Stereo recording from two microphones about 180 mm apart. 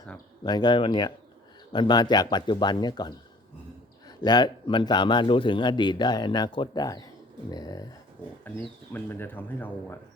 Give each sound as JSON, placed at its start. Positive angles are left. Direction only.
{"t": 0.4, "sound": "a man's voice", "side_deg": 25}
{"t": 4.2, "sound": "a man's voice", "side_deg": 25}
{"t": 8.4, "sound": "speech", "side_deg": 10}